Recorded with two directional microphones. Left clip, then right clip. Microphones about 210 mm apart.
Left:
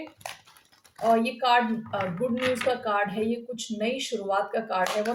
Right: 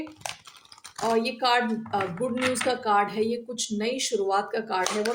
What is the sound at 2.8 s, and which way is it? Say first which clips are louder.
Speech: right 3 dB; 50° right (ahead or behind).